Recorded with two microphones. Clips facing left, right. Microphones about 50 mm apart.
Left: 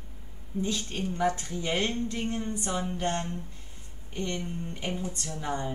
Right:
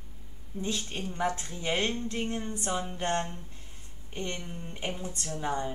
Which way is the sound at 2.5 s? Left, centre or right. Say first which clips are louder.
Left 1 dB; right.